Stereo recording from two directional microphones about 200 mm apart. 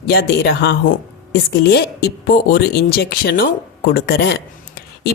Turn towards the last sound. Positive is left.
turn(degrees=55)  # may be behind; listen again after turning